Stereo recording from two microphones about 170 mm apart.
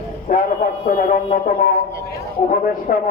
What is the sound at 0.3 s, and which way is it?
A man's voice, 55° left (ahead or behind).